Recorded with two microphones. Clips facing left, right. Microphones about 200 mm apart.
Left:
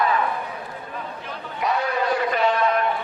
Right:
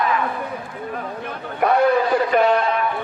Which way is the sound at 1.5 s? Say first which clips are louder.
Right 8 dB; 55° right (ahead or behind).